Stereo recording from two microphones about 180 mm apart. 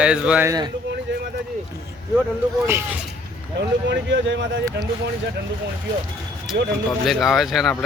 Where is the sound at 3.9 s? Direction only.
85° right.